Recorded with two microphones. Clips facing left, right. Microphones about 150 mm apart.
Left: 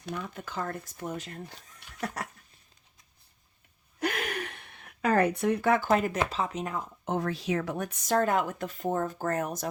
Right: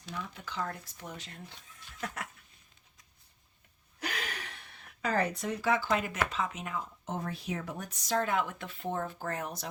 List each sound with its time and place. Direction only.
0.0 s speech: 55° left (ahead or behind)
4.0 s a sound: 55° left (ahead or behind)
6.1 s speech: 35° left (ahead or behind)
7.0 s speech: 70° left (ahead or behind); by 9.6 s 45° left (ahead or behind)